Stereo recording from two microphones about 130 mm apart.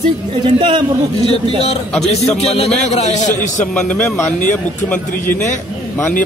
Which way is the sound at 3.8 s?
15° left (ahead or behind).